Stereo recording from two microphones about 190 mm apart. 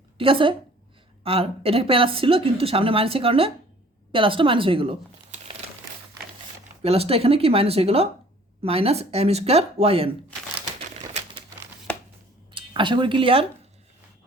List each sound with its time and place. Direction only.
0.2 s a woman's voice: 30° right (ahead or behind)
6.8 s speech: 30° right (ahead or behind)
12.5 s speech: 25° right (ahead or behind)